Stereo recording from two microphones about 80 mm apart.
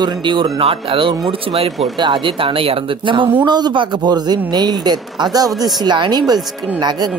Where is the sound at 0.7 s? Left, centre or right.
Right.